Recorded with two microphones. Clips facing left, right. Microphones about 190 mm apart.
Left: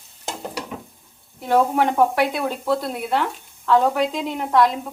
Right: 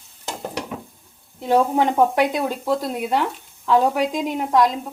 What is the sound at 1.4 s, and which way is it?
Speech, 15° right (ahead or behind).